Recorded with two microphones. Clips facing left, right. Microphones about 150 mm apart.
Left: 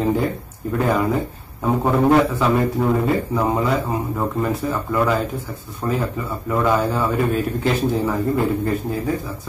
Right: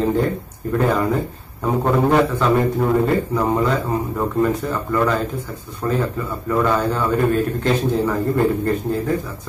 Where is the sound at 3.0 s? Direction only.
5° left (ahead or behind).